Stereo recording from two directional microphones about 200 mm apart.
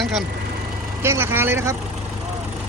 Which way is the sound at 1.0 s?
10° right (ahead or behind).